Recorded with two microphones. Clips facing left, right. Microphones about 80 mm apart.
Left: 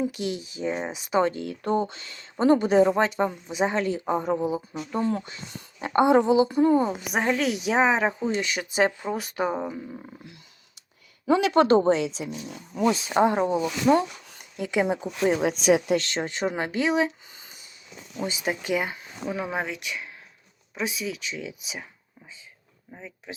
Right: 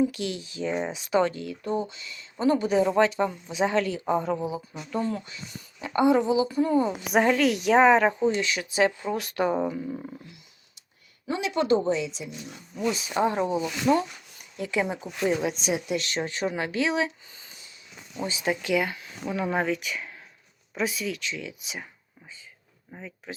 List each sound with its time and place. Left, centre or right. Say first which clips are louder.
0.0 s speech: right 2 dB; left
1.5 s speech: left 4 dB; left; by 4.4 s centre
4.9 s speech: left 2 dB; left
7.1 s a woman's voice: right 6 dB; centre
8.3 s speech: right 1 dB; left; by 10.2 s centre
11.3 s speech: left 4 dB; left
13.2 s speech: left 2 dB; left
13.9 s a woman's voice: left 2 dB; centre
14.3 s speech: left 2 dB; left
15.4 s speech: left 7 dB; left
16.0 s speech: left 1 dB; left
19.3 s a woman's voice: right 3 dB; centre
22.9 s speech: right 1 dB; centre